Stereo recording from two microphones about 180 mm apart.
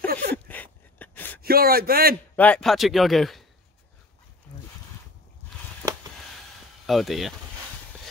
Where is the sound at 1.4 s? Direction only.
55° right (ahead or behind).